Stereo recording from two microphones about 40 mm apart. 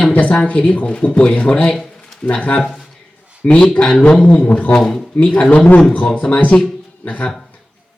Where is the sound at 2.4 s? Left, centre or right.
Left.